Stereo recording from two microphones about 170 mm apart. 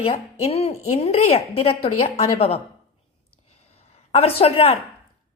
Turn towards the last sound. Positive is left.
turn(degrees=35)  # may be behind; listen again after turning